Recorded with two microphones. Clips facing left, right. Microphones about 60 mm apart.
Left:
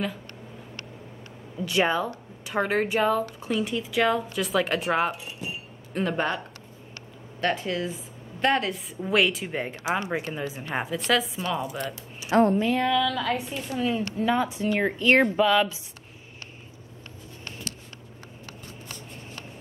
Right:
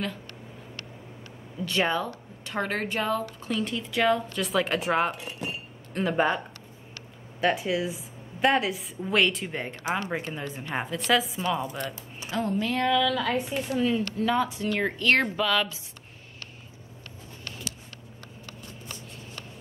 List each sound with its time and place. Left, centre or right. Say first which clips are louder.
1.6 s speech: left 2 dB; centre
5.1 s speech: right 1 dB; right
5.9 s a woman's voice: right 2 dB; centre
12.3 s speech: left 9 dB; left
12.7 s speech: even; centre
14.0 s speech: left 1 dB; centre